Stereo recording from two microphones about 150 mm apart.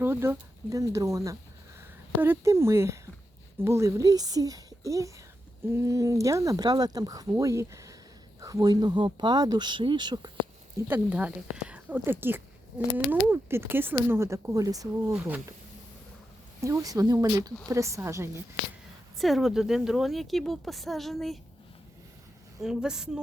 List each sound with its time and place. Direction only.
0.0 s speech: 15° right (ahead or behind)
10.8 s speech: 10° right (ahead or behind)
15.1 s speech: 10° right (ahead or behind)
16.6 s speech: 20° right (ahead or behind)
19.2 s speech: centre (ahead or behind)
22.6 s speech: 5° right (ahead or behind)